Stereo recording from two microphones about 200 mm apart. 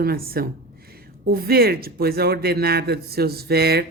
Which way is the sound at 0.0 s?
50° right (ahead or behind).